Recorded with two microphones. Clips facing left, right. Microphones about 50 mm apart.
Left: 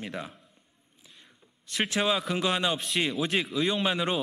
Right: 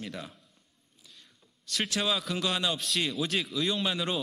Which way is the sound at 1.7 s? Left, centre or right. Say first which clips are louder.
Left 3 dB; left.